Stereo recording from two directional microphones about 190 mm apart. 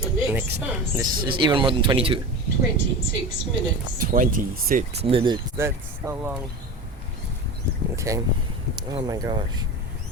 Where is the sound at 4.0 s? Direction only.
45° right (ahead or behind).